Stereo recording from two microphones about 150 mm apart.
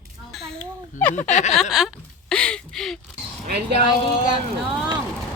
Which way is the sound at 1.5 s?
Centre (ahead or behind).